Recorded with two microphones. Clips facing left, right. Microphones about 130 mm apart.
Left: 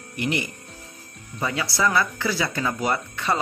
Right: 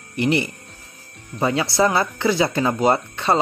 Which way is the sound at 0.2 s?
30° right (ahead or behind).